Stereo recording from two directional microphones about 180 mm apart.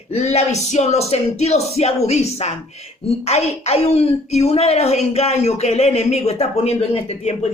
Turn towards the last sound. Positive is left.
turn(degrees=35)  # may be behind; listen again after turning